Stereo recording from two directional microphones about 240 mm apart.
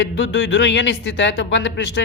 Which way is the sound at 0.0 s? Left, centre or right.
Left.